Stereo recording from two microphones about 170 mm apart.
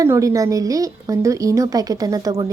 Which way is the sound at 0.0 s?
20° right (ahead or behind).